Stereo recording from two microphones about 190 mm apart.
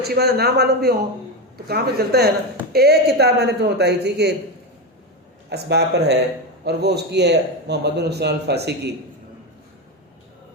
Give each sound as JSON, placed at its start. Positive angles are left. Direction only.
{"t": 0.0, "sound": "a man's voice", "side_deg": -55}
{"t": 5.5, "sound": "a man's voice", "side_deg": -60}